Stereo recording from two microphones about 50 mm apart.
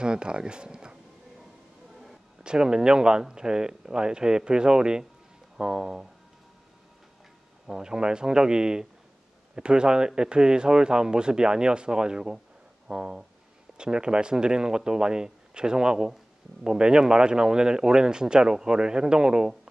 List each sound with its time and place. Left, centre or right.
0.0 s speech: centre
2.4 s speech: centre
7.6 s speech: centre
12.8 s a sound: centre
13.7 s speech: centre